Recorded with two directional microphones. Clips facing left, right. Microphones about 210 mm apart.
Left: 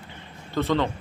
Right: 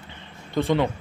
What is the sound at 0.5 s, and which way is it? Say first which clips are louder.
Speech: right 2 dB; 15° right (ahead or behind).